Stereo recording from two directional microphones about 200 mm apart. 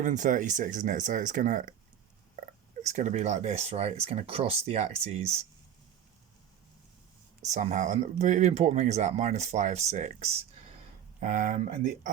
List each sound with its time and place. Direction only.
0.0 s speech: 40° right (ahead or behind)
2.8 s speech: 35° right (ahead or behind)
7.5 s speech: 35° right (ahead or behind)